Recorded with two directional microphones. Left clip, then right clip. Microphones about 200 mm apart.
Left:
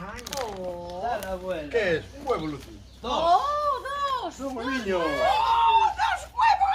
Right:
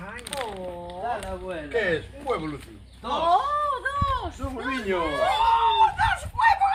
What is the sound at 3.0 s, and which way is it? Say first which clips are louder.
Chicken: even; 30° left (ahead or behind).